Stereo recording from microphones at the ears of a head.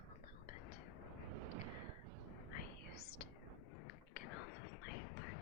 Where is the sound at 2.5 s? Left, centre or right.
Left.